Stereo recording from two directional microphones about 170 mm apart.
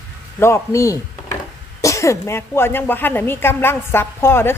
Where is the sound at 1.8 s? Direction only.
20° left (ahead or behind).